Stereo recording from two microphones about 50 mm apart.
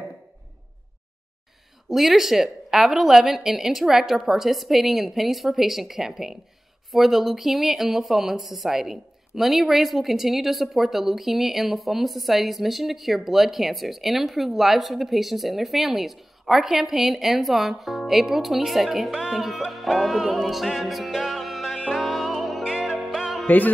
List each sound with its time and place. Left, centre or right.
1.9 s a woman's voice: centre
19.3 s music: centre
23.4 s music: left